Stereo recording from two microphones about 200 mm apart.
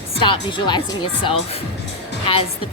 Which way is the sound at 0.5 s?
20° left (ahead or behind).